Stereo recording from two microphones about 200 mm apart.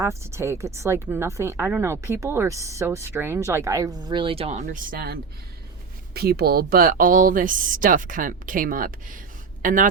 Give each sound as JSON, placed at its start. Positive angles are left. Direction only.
{"t": 0.0, "sound": "speech", "side_deg": -15}